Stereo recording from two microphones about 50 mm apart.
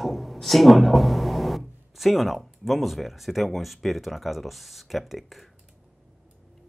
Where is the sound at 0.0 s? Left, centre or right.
Centre.